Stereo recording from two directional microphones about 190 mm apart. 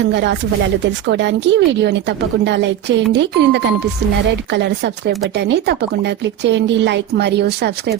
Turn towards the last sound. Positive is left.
turn(degrees=-60)  # may be behind; listen again after turning